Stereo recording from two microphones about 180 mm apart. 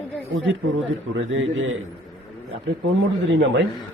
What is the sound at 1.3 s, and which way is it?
Speech, 90° right.